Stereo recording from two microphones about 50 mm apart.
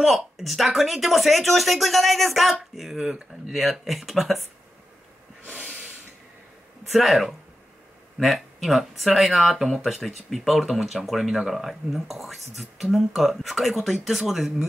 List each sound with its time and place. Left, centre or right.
0.0 s speech: centre
5.4 s snort: right
6.9 s speech: centre